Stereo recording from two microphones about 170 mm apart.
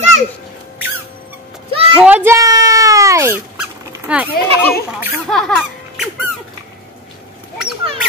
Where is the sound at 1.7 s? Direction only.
35° right (ahead or behind).